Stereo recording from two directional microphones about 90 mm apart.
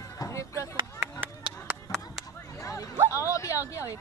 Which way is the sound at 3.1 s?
35° left (ahead or behind).